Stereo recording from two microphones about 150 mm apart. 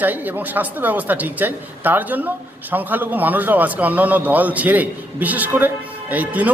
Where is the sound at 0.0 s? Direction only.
10° right (ahead or behind).